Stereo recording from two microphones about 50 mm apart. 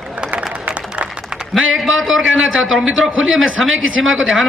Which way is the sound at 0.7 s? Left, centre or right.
Right.